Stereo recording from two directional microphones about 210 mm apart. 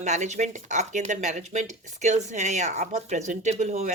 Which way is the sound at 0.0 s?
35° right (ahead or behind).